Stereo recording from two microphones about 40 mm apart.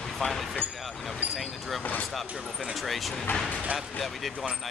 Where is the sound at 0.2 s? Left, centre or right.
Centre.